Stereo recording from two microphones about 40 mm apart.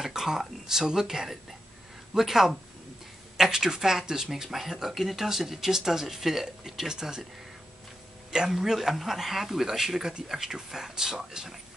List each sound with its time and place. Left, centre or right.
0.0 s speech: centre
8.5 s speech: centre